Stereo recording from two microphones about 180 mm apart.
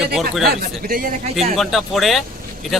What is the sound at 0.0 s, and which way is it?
Speech, 5° right (ahead or behind).